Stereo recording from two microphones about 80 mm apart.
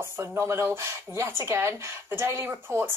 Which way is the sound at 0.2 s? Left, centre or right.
Right.